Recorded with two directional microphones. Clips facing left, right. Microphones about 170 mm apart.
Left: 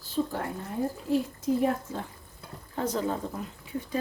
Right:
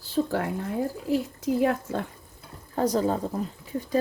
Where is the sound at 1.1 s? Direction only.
85° right.